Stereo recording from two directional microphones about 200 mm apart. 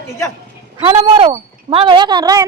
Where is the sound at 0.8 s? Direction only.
25° right (ahead or behind).